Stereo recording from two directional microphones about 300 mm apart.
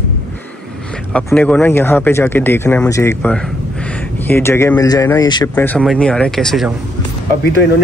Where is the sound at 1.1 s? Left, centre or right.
Centre.